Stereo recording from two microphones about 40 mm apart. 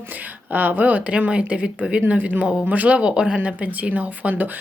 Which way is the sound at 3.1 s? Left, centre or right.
Right.